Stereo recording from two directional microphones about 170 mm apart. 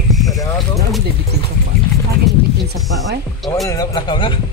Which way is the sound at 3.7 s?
25° left (ahead or behind).